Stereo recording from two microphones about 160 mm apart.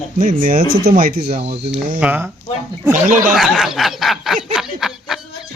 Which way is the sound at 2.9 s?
55° right (ahead or behind).